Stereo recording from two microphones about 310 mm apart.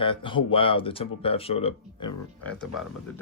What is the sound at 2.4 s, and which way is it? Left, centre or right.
Speech, centre.